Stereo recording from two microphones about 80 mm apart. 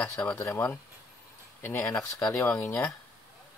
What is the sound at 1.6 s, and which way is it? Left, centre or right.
Speech, left.